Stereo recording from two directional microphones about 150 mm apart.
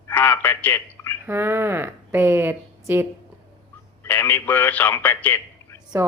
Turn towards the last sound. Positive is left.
turn(degrees=10)  # may be behind; listen again after turning